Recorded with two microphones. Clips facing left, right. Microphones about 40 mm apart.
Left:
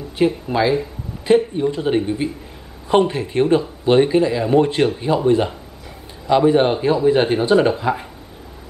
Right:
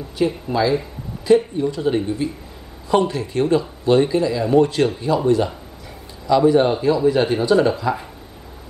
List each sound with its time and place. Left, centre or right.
0.5 s speech: left